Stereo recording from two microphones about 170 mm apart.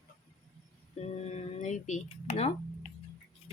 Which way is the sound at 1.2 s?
40° left (ahead or behind).